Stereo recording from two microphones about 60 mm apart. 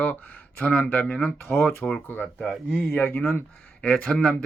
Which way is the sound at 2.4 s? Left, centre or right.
Centre.